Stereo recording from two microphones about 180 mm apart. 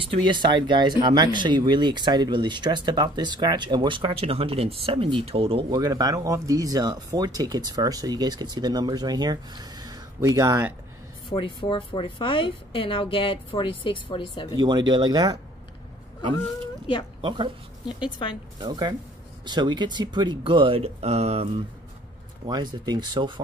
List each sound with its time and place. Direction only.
0.0 s speech: 30° right (ahead or behind)
11.2 s a woman's voice: 30° left (ahead or behind)
14.6 s speech: 25° right (ahead or behind)
17.2 s speech: 25° right (ahead or behind)
18.6 s speech: 20° right (ahead or behind)
22.5 s speech: 25° right (ahead or behind)